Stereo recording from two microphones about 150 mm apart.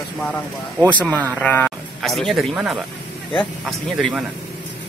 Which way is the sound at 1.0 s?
10° left (ahead or behind).